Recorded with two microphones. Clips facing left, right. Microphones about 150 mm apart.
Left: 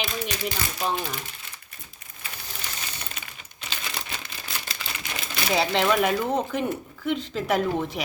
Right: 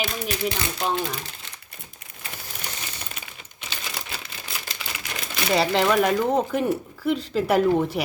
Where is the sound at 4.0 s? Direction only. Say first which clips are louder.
Even; 10° right (ahead or behind).